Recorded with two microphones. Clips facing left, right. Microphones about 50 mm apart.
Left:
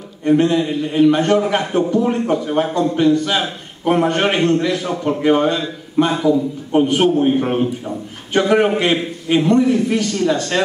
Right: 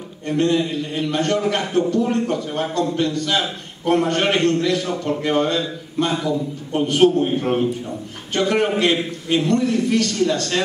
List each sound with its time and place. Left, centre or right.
0.2 s a man's voice: centre